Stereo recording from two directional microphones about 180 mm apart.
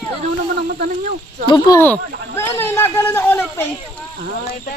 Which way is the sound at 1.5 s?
20° left (ahead or behind).